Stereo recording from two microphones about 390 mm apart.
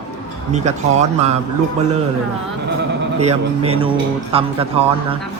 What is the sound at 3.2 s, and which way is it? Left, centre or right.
A man's voice, centre.